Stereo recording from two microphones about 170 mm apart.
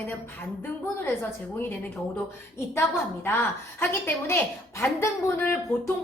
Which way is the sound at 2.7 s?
15° left (ahead or behind).